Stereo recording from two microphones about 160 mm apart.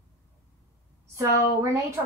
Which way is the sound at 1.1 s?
15° right (ahead or behind).